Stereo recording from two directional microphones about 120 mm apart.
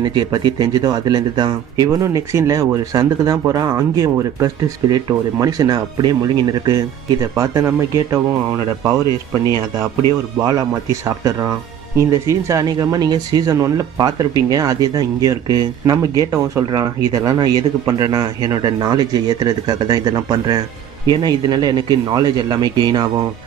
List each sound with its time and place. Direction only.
0.0 s speech: 35° right (ahead or behind)
10.4 s speech: 30° right (ahead or behind)